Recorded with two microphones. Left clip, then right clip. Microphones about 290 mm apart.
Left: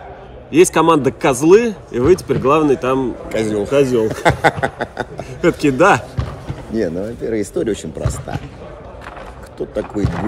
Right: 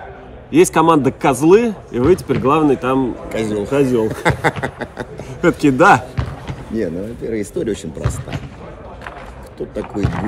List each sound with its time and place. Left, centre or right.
0.5 s speech: centre
3.3 s speech: centre
5.4 s speech: centre
6.7 s speech: centre
9.6 s speech: centre